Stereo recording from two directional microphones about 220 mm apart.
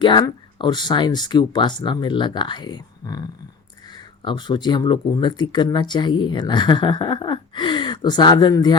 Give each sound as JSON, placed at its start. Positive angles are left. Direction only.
{"t": 0.0, "sound": "speech", "side_deg": 20}